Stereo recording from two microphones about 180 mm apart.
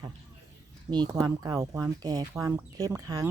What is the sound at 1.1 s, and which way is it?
Speech, 20° right (ahead or behind).